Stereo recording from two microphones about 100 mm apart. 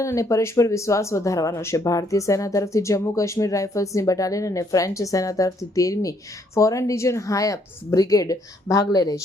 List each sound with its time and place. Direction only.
0.0 s speech: 30° left (ahead or behind)